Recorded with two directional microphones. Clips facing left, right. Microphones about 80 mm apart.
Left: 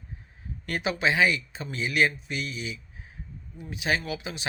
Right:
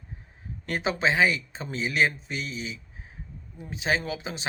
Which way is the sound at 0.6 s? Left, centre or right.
Right.